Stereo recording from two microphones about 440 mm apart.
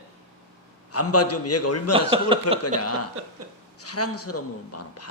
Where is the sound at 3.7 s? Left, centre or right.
Left.